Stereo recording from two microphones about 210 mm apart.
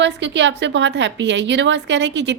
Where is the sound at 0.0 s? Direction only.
60° right (ahead or behind).